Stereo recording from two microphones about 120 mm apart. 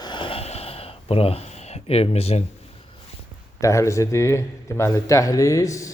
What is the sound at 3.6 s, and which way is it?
Speech, 25° left (ahead or behind).